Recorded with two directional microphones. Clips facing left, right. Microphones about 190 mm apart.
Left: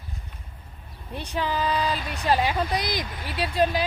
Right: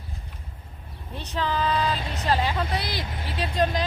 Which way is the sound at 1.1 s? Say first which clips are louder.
Even; 10° left (ahead or behind).